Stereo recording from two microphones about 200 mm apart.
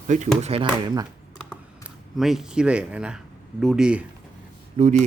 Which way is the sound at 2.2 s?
Centre (ahead or behind).